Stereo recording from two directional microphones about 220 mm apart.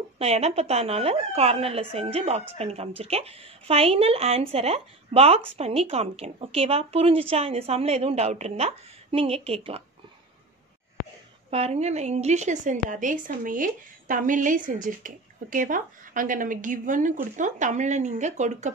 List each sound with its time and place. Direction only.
0.2 s a woman's voice: 30° right (ahead or behind)
11.5 s a woman's voice: 30° right (ahead or behind)